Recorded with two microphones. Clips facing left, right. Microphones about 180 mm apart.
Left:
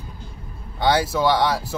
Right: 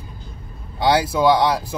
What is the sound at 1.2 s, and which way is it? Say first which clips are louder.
Speech: right 3 dB; 15° right (ahead or behind).